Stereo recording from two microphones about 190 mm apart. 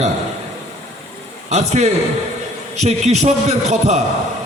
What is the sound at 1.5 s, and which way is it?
A man's voice, 35° right (ahead or behind).